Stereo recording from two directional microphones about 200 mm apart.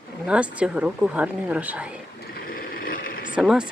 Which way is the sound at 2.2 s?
50° left (ahead or behind).